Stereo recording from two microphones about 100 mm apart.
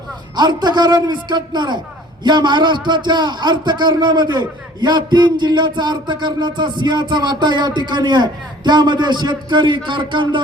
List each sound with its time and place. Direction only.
0.3 s a man's voice: 45° right (ahead or behind)